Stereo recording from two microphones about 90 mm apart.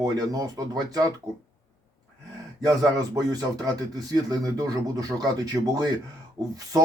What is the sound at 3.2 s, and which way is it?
Speech, 45° right (ahead or behind).